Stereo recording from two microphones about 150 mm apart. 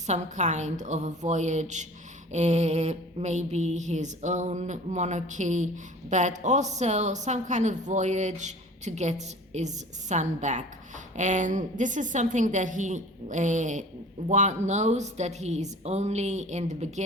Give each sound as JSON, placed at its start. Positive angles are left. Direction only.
{"t": 0.1, "sound": "mantra", "side_deg": -50}